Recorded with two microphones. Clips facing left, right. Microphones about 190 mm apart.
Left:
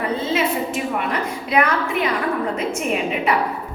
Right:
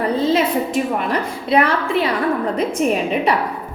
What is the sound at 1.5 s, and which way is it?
Speech, 30° right (ahead or behind).